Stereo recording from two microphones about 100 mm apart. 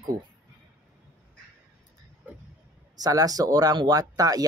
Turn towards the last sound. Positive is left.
turn(degrees=-35)  # may be behind; listen again after turning